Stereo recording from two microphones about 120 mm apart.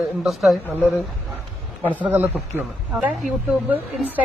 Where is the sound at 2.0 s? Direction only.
15° right (ahead or behind).